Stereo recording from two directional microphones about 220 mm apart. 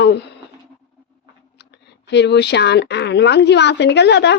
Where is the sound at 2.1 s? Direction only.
50° left (ahead or behind).